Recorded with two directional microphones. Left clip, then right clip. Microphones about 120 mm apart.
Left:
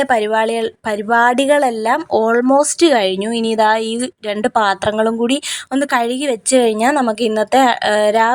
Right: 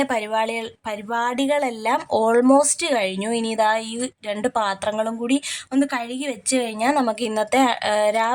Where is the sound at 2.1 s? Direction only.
20° left (ahead or behind); by 7.0 s 55° left (ahead or behind).